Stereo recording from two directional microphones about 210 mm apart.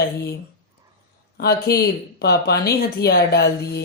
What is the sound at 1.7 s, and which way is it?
Speech, 50° left (ahead or behind).